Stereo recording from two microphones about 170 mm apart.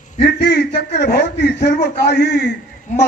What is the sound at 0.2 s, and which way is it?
A man's voice, 75° left (ahead or behind).